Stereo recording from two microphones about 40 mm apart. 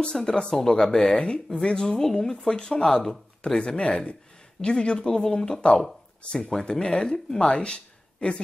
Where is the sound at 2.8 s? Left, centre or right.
Centre; by 5.0 s left.